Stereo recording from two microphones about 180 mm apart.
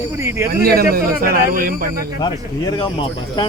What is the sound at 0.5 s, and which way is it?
A man's voice, 60° right (ahead or behind).